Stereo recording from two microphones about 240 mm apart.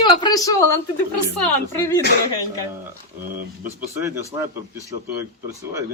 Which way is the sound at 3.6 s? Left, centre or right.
Centre.